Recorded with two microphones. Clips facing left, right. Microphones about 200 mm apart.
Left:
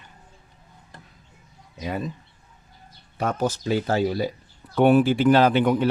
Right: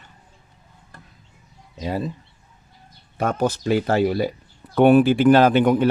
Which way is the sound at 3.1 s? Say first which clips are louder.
Right 3 dB; 55° right (ahead or behind).